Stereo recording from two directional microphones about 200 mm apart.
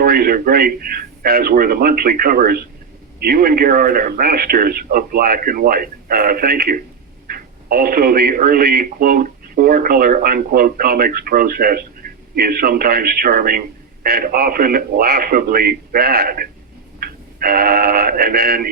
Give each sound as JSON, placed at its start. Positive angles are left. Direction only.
{"t": 0.0, "sound": "a man's voice", "side_deg": -50}